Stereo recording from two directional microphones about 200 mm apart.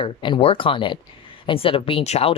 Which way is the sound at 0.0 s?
25° left (ahead or behind).